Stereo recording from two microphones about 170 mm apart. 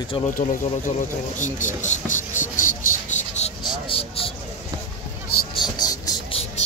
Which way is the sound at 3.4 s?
35° left (ahead or behind).